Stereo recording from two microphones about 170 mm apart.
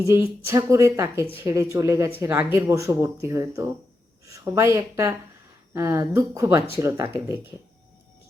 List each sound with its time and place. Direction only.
0.1 s speech: 15° right (ahead or behind)